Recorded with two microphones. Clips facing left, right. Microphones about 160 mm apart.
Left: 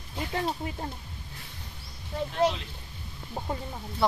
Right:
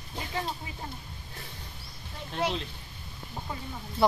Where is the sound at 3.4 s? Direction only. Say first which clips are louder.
Left 5 dB; 40° left (ahead or behind).